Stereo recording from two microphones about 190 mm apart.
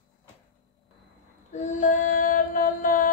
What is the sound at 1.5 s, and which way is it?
Music, 40° left (ahead or behind).